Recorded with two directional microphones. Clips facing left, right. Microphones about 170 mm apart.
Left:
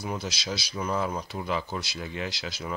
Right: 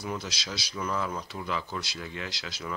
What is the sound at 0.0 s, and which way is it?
Speech, 20° left (ahead or behind).